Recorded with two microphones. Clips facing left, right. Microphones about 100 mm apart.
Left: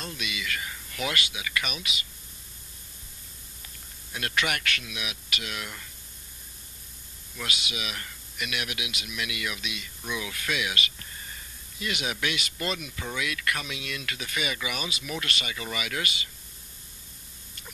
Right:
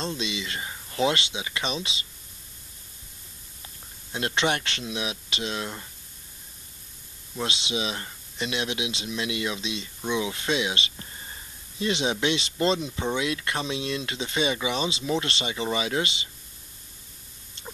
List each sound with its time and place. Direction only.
0.0 s speech: 25° right (ahead or behind)
4.1 s speech: 25° right (ahead or behind)
7.3 s speech: 25° right (ahead or behind)
17.6 s a sound: 25° right (ahead or behind)